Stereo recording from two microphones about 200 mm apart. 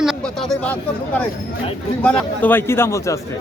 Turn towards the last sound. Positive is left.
turn(degrees=15)  # may be behind; listen again after turning